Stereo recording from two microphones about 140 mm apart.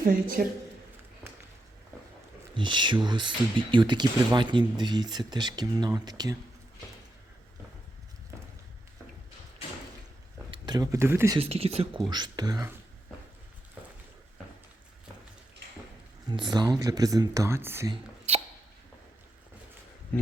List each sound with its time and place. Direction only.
0.0 s a woman's voice: 85° right
1.2 s a sound: 15° right (ahead or behind)
2.6 s speech: 35° right (ahead or behind)
10.5 s speech: 30° right (ahead or behind)
11.3 s speech: 45° right (ahead or behind)
11.9 s speech: 30° right (ahead or behind)
16.3 s speech: 30° right (ahead or behind)